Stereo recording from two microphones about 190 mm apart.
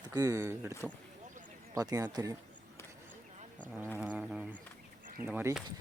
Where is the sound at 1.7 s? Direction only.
20° right (ahead or behind).